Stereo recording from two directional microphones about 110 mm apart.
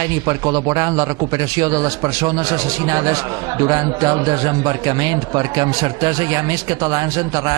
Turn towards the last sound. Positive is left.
turn(degrees=-35)  # may be behind; listen again after turning